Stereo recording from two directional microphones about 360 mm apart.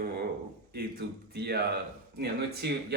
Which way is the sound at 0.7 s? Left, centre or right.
Right.